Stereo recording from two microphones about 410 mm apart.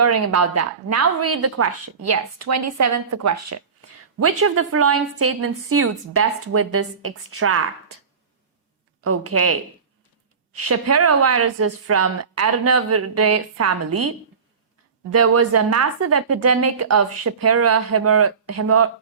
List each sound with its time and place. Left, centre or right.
0.0 s speech: right
9.0 s speech: right
10.6 s speech: right
15.1 s speech: right